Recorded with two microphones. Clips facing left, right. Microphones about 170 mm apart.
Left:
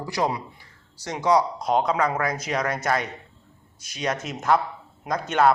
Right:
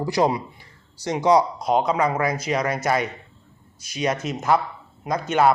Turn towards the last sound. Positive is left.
turn(degrees=-5)  # may be behind; listen again after turning